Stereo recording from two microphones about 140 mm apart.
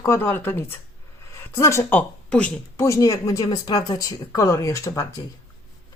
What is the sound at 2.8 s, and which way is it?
Speech, 20° left (ahead or behind).